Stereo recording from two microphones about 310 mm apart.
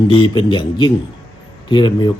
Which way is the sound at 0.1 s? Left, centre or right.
Centre.